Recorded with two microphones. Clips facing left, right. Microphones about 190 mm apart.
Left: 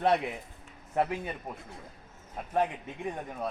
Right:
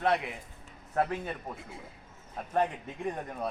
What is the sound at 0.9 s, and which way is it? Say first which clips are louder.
A man's voice: even; 10° left (ahead or behind).